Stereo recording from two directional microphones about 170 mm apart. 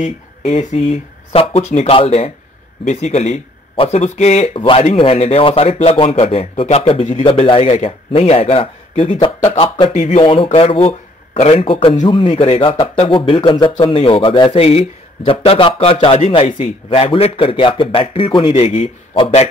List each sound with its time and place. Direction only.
0.0 s speech: 40° left (ahead or behind)